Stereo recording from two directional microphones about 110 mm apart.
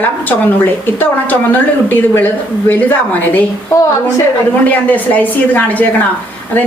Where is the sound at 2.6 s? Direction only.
15° left (ahead or behind).